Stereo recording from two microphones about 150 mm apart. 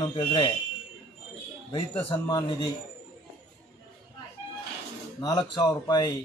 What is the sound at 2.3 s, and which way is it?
Speech, 25° left (ahead or behind).